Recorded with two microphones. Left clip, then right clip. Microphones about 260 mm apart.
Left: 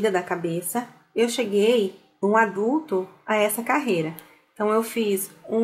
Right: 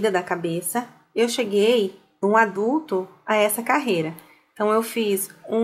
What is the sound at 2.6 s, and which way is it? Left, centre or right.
Speech, left.